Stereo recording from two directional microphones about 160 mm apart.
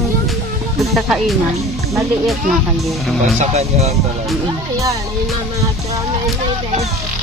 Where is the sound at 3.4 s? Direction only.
45° right (ahead or behind).